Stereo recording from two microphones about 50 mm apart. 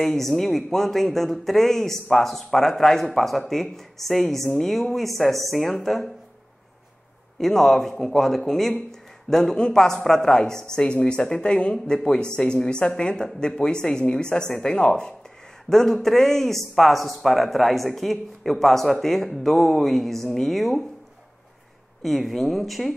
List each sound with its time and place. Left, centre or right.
0.0 s speech: centre
7.3 s a man's voice: centre
22.0 s speech: centre